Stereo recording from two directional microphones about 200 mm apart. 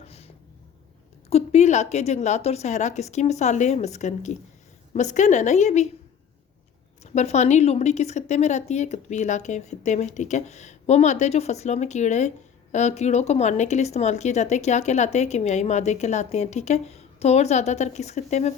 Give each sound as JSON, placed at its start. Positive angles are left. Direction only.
{"t": 0.0, "sound": "a sound", "side_deg": 30}
{"t": 1.3, "sound": "speech", "side_deg": 35}
{"t": 7.0, "sound": "speech", "side_deg": 35}